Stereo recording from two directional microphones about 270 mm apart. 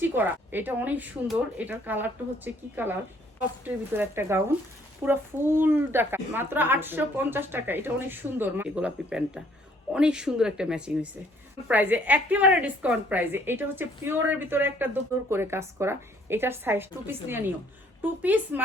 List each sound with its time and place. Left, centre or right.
0.0 s a woman's voice: centre